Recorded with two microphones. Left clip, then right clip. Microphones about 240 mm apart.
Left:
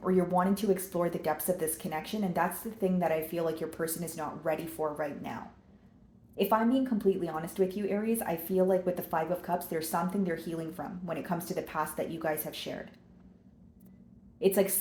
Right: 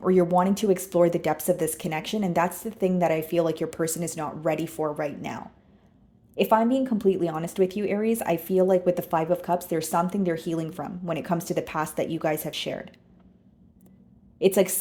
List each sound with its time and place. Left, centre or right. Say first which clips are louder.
0.0 s speech: right 7 dB; right
14.3 s speech: right 6 dB; right